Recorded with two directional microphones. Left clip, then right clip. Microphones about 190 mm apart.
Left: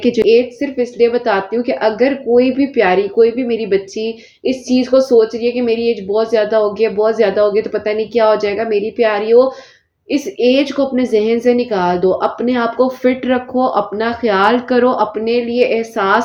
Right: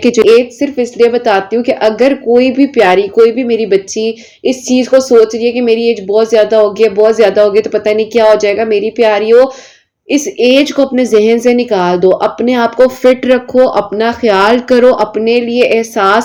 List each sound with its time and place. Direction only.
0.0 s speech: 35° right (ahead or behind)